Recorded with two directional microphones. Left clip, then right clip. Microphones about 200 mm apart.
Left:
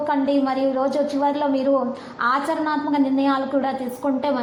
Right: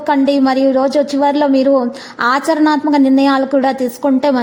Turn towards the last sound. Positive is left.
turn(degrees=-50)  # may be behind; listen again after turning